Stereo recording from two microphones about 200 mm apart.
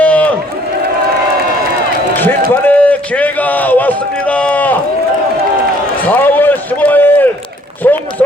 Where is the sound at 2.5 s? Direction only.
10° left (ahead or behind).